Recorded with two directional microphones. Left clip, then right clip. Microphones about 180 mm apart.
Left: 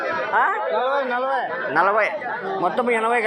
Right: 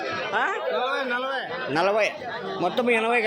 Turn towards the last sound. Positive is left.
turn(degrees=-35)  # may be behind; listen again after turning